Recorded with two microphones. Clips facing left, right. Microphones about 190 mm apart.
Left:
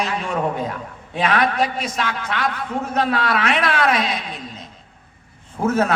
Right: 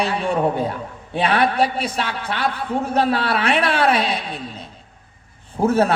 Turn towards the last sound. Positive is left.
turn(degrees=-35)  # may be behind; listen again after turning